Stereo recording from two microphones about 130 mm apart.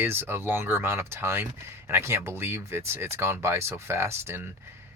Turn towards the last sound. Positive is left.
turn(degrees=-20)  # may be behind; listen again after turning